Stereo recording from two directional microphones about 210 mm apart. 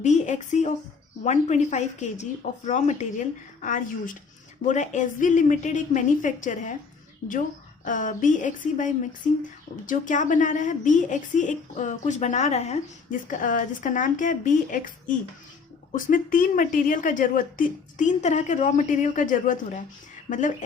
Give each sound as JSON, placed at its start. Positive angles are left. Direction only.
{"t": 0.0, "sound": "a woman's voice", "side_deg": 35}
{"t": 7.9, "sound": "a woman's voice", "side_deg": 40}